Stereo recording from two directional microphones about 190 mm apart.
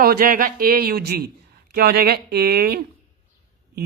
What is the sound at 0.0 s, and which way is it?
Speech, 50° right (ahead or behind).